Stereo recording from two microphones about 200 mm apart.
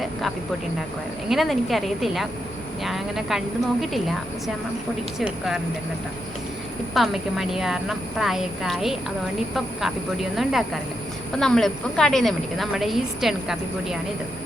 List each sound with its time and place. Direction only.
0.0 s a sound: centre (ahead or behind)
1.3 s a woman's voice: centre (ahead or behind)
6.9 s a woman's voice: centre (ahead or behind)
10.3 s a woman's voice: centre (ahead or behind)